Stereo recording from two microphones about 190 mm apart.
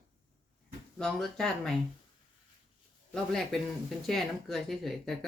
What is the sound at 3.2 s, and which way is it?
Speech, centre (ahead or behind).